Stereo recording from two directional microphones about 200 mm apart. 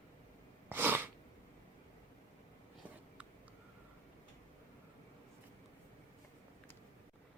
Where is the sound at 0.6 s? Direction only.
10° right (ahead or behind).